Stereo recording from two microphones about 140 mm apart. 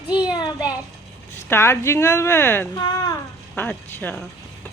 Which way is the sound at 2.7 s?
25° left (ahead or behind).